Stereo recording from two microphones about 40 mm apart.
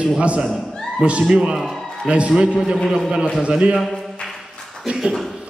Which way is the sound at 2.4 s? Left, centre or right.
Centre.